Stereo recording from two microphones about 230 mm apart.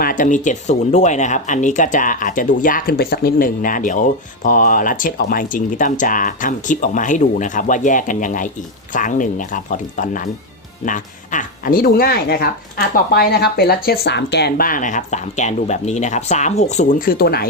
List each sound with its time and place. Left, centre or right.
0.0 s speech: left